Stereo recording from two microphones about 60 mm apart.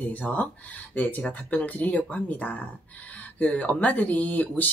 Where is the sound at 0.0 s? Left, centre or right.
Left.